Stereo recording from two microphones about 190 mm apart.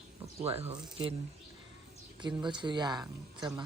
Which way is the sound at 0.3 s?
30° right (ahead or behind).